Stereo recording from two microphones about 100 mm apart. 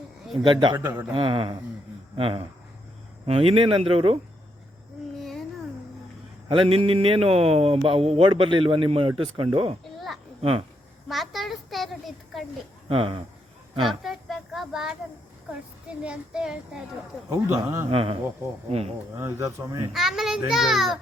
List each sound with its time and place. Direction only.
0.4 s a man's voice: 55° right (ahead or behind); by 4.2 s 70° right (ahead or behind)
6.5 s speech: 70° right (ahead or behind)
8.3 s speech: 55° right (ahead or behind)
11.1 s a child's voice: centre (ahead or behind)
12.9 s speech: 65° right (ahead or behind)
13.8 s speech: centre (ahead or behind)
16.0 s speech: 5° right (ahead or behind)
17.2 s speech: 25° right (ahead or behind)
17.9 s speech: 70° right (ahead or behind)
19.1 s speech: 30° right (ahead or behind)
19.9 s a child's voice: centre (ahead or behind)